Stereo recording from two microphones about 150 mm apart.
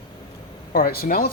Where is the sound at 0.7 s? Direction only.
80° left.